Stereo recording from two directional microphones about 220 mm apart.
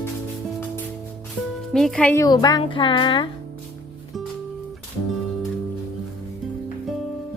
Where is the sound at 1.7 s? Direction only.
Centre (ahead or behind); by 3.3 s 20° left (ahead or behind).